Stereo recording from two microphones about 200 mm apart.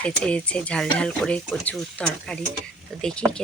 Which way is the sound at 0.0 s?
5° left (ahead or behind).